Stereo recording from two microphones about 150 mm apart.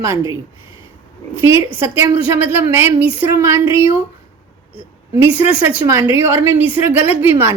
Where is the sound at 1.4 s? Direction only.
15° right (ahead or behind).